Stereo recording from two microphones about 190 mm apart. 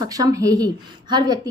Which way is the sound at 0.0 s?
20° right (ahead or behind).